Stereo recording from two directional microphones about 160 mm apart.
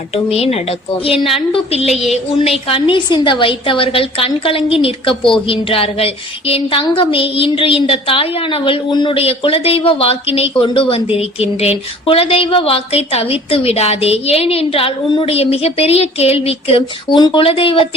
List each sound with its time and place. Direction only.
0.1 s a woman's voice: 40° left (ahead or behind)